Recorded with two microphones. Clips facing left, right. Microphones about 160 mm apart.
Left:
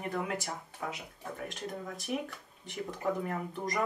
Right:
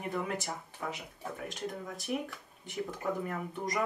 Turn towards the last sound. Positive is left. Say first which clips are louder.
# even
turn(degrees=0)  # may be behind; listen again after turning